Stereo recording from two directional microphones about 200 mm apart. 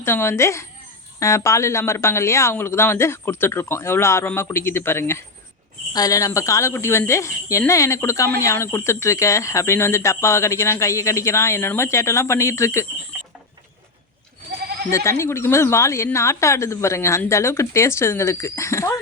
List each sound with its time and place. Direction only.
0.0 s speech: 10° left (ahead or behind)
14.6 s bleat: 50° right (ahead or behind)
14.8 s speech: 15° left (ahead or behind)